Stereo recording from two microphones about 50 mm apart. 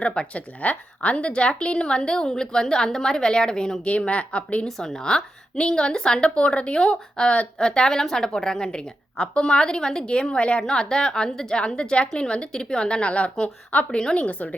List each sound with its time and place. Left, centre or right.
0.0 s a woman's voice: left
3.8 s a woman's voice: left
4.6 s a woman's voice: centre; by 14.5 s left